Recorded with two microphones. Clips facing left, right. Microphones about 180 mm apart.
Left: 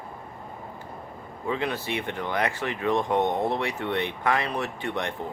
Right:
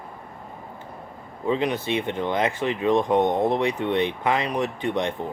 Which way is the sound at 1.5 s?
20° right (ahead or behind).